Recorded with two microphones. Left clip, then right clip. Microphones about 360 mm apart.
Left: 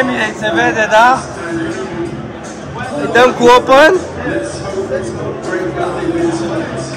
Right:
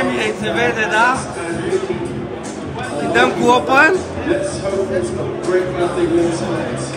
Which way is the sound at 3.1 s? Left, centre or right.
Centre.